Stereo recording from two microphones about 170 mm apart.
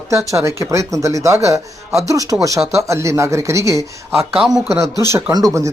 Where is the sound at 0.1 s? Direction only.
15° right (ahead or behind).